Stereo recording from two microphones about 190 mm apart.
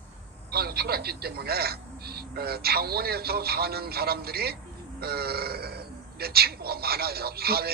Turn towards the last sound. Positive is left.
turn(degrees=-55)  # may be behind; listen again after turning